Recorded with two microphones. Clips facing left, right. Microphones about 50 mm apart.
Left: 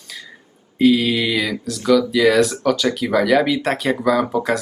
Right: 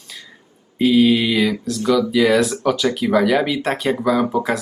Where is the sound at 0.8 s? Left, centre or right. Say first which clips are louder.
Right 1 dB; centre.